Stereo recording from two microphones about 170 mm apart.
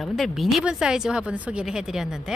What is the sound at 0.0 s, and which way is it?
A woman's voice, centre (ahead or behind).